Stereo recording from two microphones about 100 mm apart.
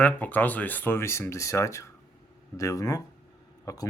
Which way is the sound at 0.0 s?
15° left (ahead or behind).